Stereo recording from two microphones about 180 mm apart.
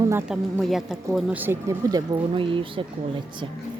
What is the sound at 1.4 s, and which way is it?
Speech, 15° right (ahead or behind).